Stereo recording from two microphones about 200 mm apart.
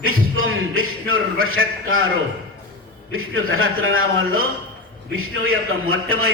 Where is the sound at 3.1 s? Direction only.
90° right.